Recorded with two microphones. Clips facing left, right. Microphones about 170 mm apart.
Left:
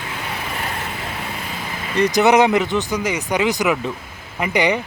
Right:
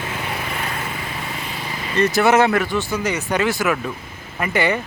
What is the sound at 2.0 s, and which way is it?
Speech, 15° left (ahead or behind).